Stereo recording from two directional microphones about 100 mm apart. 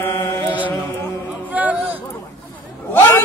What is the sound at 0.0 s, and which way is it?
Mantra, 25° left (ahead or behind).